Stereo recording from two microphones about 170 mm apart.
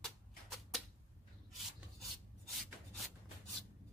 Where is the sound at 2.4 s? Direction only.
Centre (ahead or behind).